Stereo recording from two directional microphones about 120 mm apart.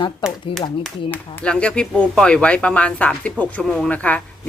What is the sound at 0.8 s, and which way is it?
Speech, 10° left (ahead or behind).